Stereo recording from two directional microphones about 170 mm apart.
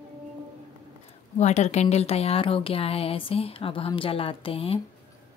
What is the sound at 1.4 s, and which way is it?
Speech, 40° left (ahead or behind).